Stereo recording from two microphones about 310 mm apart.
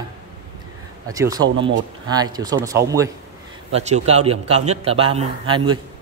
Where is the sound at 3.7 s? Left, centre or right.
Right.